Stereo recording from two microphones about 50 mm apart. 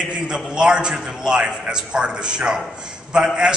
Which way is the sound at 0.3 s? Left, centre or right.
Centre.